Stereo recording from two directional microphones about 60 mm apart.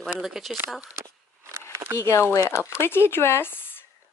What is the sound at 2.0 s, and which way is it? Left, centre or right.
Speech, left.